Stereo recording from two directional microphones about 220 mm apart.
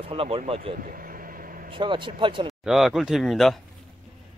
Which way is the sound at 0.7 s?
40° right (ahead or behind).